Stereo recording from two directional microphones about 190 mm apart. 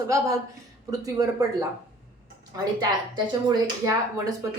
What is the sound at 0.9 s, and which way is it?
Speech, 20° right (ahead or behind).